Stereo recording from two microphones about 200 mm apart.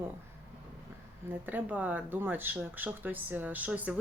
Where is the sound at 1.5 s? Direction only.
10° right (ahead or behind).